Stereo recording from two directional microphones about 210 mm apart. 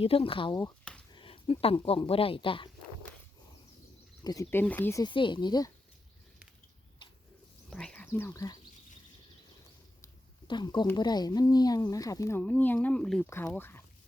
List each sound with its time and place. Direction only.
0.0 s speech: 25° left (ahead or behind)
4.2 s speech: 15° left (ahead or behind)
7.7 s speech: 5° left (ahead or behind)
10.0 s a sound: 20° left (ahead or behind)
10.9 s speech: 20° left (ahead or behind)